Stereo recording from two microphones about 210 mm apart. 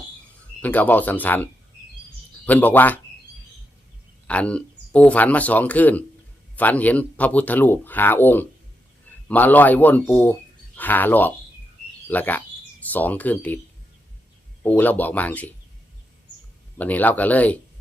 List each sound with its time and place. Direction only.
0.6 s speech: 10° left (ahead or behind)
2.5 s speech: 10° left (ahead or behind)
4.3 s speech: 5° left (ahead or behind)
14.6 s speech: 10° left (ahead or behind)
16.7 s speech: 10° left (ahead or behind)